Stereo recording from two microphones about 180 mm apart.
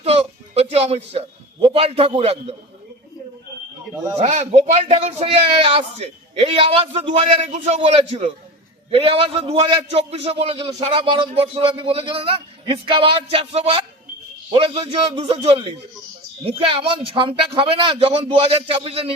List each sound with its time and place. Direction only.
0.0 s a sound: 35° right (ahead or behind)
1.6 s a man's voice: 30° right (ahead or behind)
4.2 s a man's voice: 40° right (ahead or behind)